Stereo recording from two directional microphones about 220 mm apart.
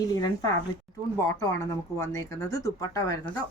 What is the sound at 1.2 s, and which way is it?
Speech, 15° left (ahead or behind).